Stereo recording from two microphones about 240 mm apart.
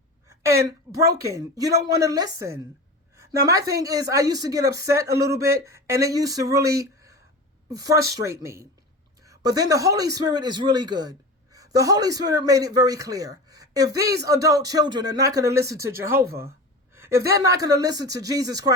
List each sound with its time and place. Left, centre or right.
0.3 s a sound: centre
0.9 s speech: right
1.4 s a woman's voice: centre
16.9 s a woman's voice: centre